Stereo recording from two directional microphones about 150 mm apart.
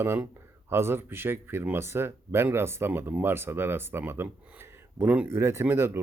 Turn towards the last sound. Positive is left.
turn(degrees=-15)  # may be behind; listen again after turning